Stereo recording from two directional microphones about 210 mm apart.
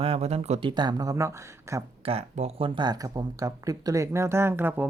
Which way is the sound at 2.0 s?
30° right (ahead or behind).